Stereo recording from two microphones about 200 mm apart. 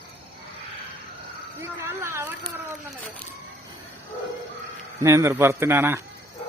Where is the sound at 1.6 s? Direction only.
15° right (ahead or behind).